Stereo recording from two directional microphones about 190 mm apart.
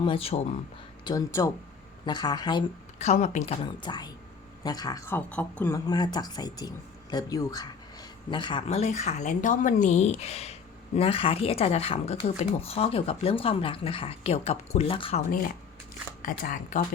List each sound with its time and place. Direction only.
0.0 s speech: 30° left (ahead or behind)
1.0 s speech: 20° left (ahead or behind)
3.0 s speech: 35° left (ahead or behind)
3.8 s speech: 20° left (ahead or behind)
16.2 s speech: 45° left (ahead or behind)